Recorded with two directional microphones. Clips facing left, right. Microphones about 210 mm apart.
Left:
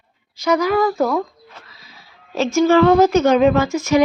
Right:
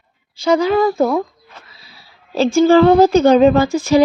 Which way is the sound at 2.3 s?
30° right (ahead or behind).